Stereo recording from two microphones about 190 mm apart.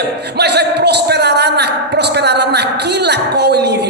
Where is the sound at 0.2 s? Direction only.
60° right (ahead or behind).